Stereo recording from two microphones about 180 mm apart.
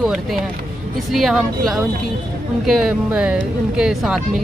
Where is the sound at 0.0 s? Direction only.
Centre (ahead or behind).